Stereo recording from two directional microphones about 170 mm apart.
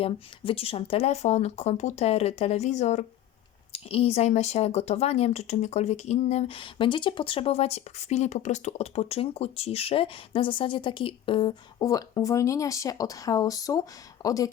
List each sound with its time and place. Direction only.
0.0 s speech: 35° left (ahead or behind)